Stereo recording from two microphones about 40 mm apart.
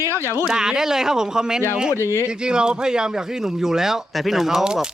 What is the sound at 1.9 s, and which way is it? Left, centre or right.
Speech, right.